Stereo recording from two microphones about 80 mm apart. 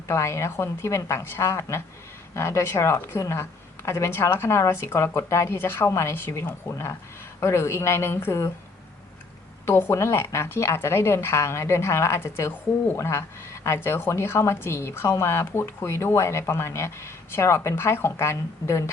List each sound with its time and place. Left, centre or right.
0.1 s speech: left
9.6 s speech: left